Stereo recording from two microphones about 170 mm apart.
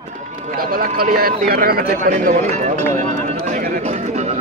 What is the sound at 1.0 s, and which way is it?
Speech, 60° right (ahead or behind).